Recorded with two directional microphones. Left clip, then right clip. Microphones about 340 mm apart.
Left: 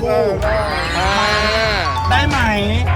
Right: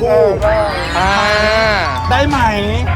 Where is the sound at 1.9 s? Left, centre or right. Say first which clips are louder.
Right 2 dB; centre.